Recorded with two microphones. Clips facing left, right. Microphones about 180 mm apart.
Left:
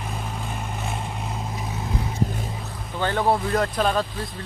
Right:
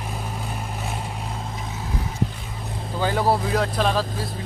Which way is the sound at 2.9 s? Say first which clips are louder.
Right 1 dB; 5° right (ahead or behind).